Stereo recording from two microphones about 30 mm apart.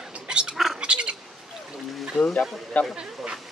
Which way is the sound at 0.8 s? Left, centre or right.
Right.